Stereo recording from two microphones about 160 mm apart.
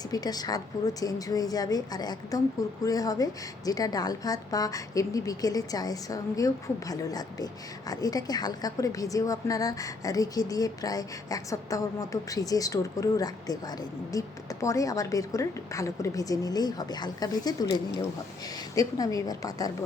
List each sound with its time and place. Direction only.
0.1 s a woman's voice: 25° left (ahead or behind)